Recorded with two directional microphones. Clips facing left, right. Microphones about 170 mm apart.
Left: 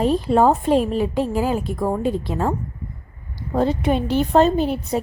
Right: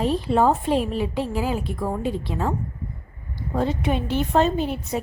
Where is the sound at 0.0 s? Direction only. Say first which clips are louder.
Left 3 dB; 45° left (ahead or behind).